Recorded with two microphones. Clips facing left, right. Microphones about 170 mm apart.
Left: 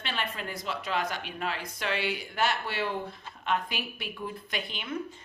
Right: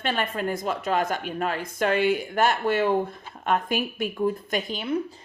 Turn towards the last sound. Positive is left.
turn(degrees=-40)  # may be behind; listen again after turning